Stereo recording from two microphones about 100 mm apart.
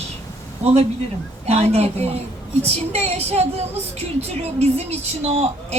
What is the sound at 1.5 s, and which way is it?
A woman's voice, 90° right.